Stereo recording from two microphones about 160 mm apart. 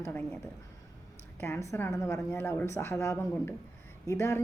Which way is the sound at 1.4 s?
15° left (ahead or behind).